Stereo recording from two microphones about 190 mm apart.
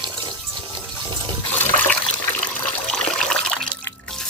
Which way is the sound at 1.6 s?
10° left (ahead or behind).